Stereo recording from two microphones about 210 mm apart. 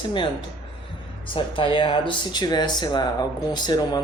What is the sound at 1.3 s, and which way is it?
Speech, 25° left (ahead or behind).